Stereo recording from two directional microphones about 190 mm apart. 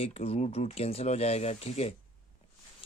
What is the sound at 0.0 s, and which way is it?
Speech, 30° left (ahead or behind).